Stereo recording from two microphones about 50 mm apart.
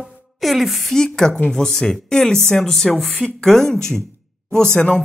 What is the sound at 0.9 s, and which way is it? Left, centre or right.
Speech, centre.